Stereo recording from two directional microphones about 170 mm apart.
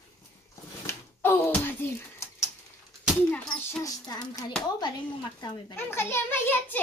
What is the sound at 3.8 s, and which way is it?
Music, 20° left (ahead or behind).